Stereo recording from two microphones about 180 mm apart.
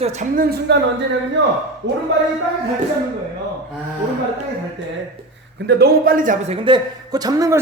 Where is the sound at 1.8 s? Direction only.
80° right.